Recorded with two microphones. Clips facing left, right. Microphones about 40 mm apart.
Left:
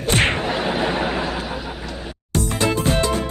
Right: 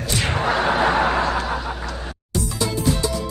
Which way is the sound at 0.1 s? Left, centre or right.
Left.